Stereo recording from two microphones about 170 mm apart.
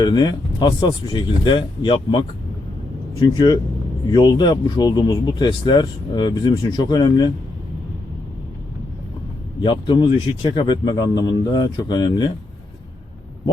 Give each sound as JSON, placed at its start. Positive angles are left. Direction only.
{"t": 0.0, "sound": "speech", "side_deg": 25}
{"t": 3.3, "sound": "speech", "side_deg": 25}
{"t": 9.6, "sound": "speech", "side_deg": 25}